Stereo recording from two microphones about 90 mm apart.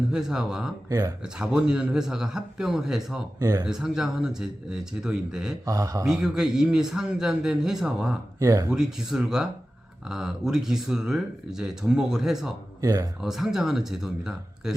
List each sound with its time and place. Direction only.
0.1 s speech: 5° right (ahead or behind)
0.9 s speech: 40° right (ahead or behind)
1.2 s a man's voice: 10° right (ahead or behind)
3.4 s speech: 40° right (ahead or behind)
3.7 s a man's voice: 5° right (ahead or behind)
5.6 s speech: 35° right (ahead or behind)
6.1 s speech: 5° right (ahead or behind)
8.4 s speech: 40° right (ahead or behind)
8.7 s a man's voice: 5° right (ahead or behind)
12.8 s speech: 40° right (ahead or behind)
13.2 s speech: 5° right (ahead or behind)